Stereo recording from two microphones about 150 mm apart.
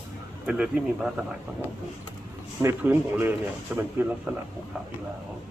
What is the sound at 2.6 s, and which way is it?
Speech, 15° right (ahead or behind).